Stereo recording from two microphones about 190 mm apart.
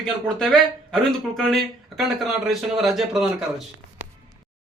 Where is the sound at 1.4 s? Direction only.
Centre (ahead or behind).